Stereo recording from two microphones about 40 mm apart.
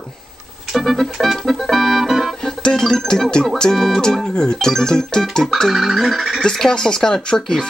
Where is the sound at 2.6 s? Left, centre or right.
Centre.